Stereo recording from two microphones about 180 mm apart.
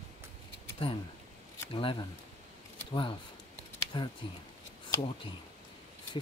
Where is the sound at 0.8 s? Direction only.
30° left (ahead or behind).